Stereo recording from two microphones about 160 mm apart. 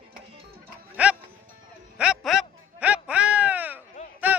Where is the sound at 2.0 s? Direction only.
Centre (ahead or behind).